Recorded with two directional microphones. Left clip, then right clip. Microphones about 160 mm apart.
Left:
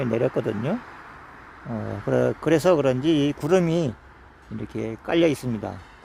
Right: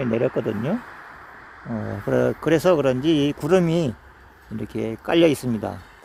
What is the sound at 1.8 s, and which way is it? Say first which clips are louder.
Speech: even; 40° right (ahead or behind).